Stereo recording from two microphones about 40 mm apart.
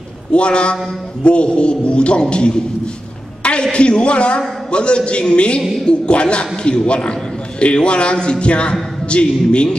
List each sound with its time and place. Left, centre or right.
0.3 s a man's voice: left
3.7 s a man's voice: left